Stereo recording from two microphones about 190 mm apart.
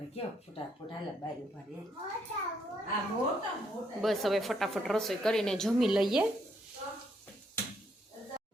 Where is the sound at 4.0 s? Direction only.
Centre (ahead or behind).